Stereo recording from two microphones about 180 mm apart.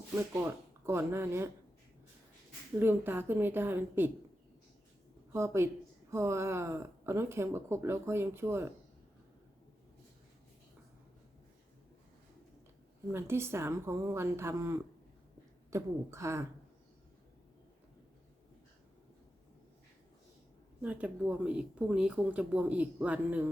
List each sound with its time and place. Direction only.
0.1 s speech: 10° right (ahead or behind)
2.7 s speech: 10° right (ahead or behind)
5.3 s speech: 15° right (ahead or behind)
13.1 s speech: 15° right (ahead or behind)
20.8 s speech: 5° right (ahead or behind)